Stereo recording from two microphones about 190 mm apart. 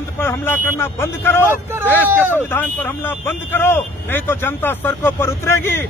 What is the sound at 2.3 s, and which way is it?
Speech, 10° left (ahead or behind).